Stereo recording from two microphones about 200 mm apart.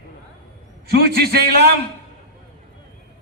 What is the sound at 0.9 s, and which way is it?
Speech, 50° right (ahead or behind).